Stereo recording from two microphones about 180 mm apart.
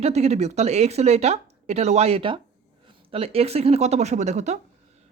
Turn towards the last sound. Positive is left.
turn(degrees=-40)  # may be behind; listen again after turning